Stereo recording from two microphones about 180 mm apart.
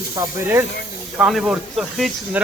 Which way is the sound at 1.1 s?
5° right (ahead or behind).